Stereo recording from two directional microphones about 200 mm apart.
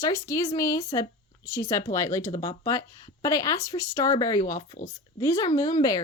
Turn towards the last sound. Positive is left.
turn(degrees=20)  # may be behind; listen again after turning